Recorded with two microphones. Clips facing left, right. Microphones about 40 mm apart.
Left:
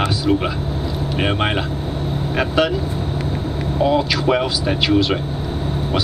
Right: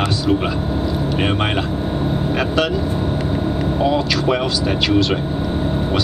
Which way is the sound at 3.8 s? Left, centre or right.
Centre.